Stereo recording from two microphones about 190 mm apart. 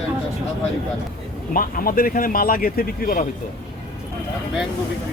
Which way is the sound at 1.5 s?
50° left (ahead or behind).